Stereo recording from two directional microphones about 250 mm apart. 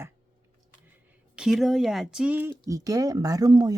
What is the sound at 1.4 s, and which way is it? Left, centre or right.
Speech, centre.